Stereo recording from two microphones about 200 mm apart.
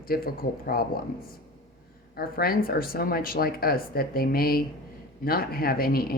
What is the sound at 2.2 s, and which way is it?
Speech, 50° left (ahead or behind).